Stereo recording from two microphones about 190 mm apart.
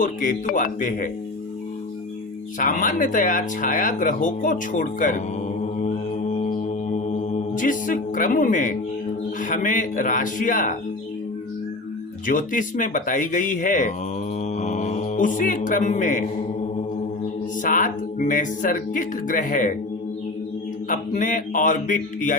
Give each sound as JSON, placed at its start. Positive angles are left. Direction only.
{"t": 0.0, "sound": "speech", "side_deg": 45}
{"t": 2.6, "sound": "speech", "side_deg": 45}
{"t": 5.8, "sound": "mantra", "side_deg": 35}
{"t": 9.4, "sound": "speech", "side_deg": 45}
{"t": 12.2, "sound": "speech", "side_deg": 45}
{"t": 14.4, "sound": "mantra", "side_deg": 35}
{"t": 17.6, "sound": "speech", "side_deg": 45}
{"t": 20.9, "sound": "speech", "side_deg": 45}